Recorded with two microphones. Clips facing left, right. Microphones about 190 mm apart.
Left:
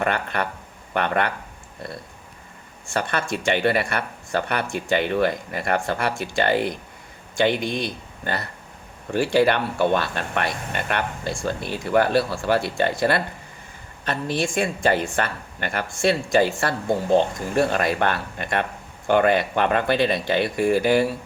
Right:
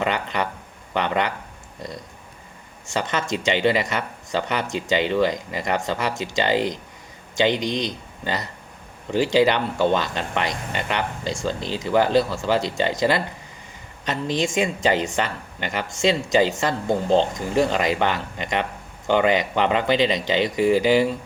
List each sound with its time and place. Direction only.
0.0 s speech: 15° right (ahead or behind)
2.8 s speech: 20° right (ahead or behind)